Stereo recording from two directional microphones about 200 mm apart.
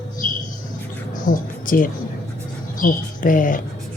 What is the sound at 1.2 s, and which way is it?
Speech, 45° left (ahead or behind).